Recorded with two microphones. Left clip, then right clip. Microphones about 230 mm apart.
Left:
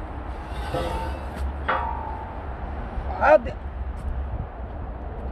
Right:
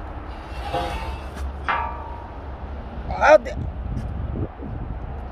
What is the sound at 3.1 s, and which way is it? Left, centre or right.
Speech, right.